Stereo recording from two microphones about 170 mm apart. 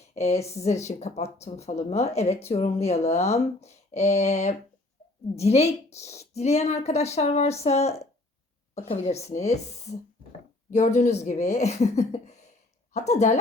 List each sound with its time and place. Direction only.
0.1 s a woman's voice: 40° left (ahead or behind)